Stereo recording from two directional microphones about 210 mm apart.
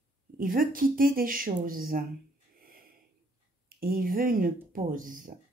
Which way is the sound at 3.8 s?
45° right (ahead or behind).